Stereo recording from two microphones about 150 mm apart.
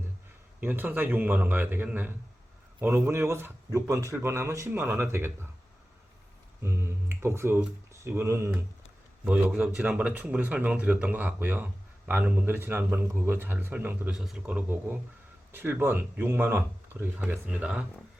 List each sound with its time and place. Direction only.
0.6 s speech: 10° right (ahead or behind)
6.6 s speech: 15° right (ahead or behind)
9.3 s a man's voice: 5° right (ahead or behind)